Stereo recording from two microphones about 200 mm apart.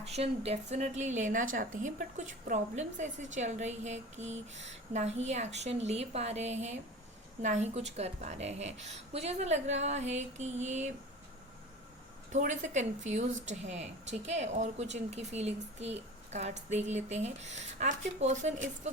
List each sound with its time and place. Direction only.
0.0 s a woman's voice: 30° right (ahead or behind)
12.3 s a woman's voice: 35° right (ahead or behind)